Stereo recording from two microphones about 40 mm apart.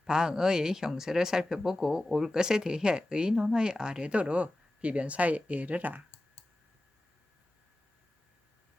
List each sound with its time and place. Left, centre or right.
0.0 s speech: centre; by 6.0 s right